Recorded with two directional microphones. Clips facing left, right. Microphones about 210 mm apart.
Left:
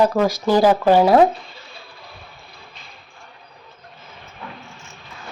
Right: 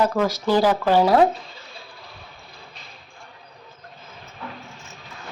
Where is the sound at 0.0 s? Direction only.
10° left (ahead or behind).